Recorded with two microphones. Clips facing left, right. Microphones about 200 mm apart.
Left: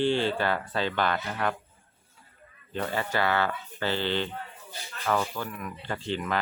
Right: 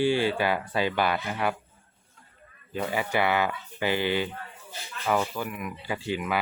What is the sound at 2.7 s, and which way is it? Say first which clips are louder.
Speech: right 2 dB; 10° right (ahead or behind).